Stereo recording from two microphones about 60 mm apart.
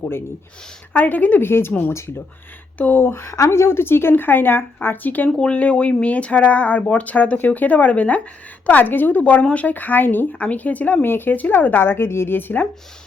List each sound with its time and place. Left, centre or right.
0.9 s speech: left
1.4 s speech: left
2.7 s speech: left
3.0 s speech: left
5.3 s speech: centre; by 12.6 s left